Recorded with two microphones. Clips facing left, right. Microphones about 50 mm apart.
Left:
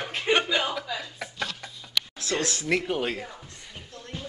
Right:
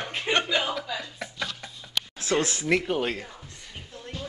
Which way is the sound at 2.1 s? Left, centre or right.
Right.